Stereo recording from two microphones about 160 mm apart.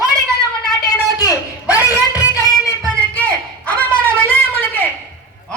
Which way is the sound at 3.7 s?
10° left (ahead or behind).